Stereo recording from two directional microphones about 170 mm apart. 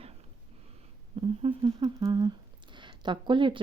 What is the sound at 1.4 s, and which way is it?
Speech, 35° right (ahead or behind).